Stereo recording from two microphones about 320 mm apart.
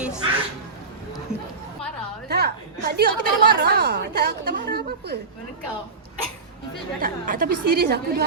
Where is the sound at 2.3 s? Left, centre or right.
Right.